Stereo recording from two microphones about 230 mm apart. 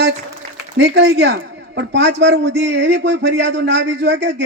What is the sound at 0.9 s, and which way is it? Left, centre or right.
A man's voice, right.